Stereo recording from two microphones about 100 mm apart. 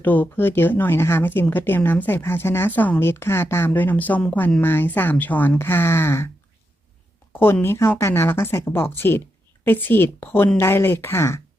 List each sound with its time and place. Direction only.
0.0 s speech: 15° left (ahead or behind)
7.3 s speech: 20° left (ahead or behind)